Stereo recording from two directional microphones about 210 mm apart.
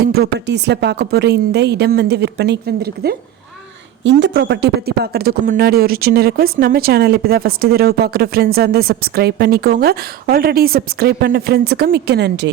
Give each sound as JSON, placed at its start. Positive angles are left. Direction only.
{"t": 0.0, "sound": "a man's voice", "side_deg": -50}